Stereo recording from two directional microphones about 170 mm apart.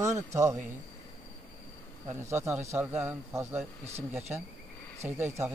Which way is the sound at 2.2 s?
15° right (ahead or behind).